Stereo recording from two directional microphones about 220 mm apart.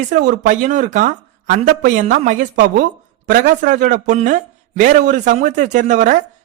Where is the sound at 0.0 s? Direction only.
35° right (ahead or behind).